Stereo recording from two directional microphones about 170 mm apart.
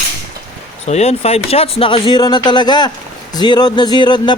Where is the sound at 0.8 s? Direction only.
40° left (ahead or behind).